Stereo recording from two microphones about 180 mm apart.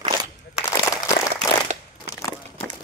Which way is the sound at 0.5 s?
5° right (ahead or behind).